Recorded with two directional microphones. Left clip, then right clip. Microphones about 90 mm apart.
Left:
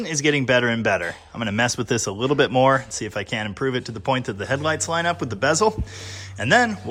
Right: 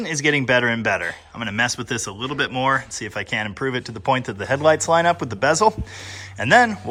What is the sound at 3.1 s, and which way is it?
Speech, 45° left (ahead or behind).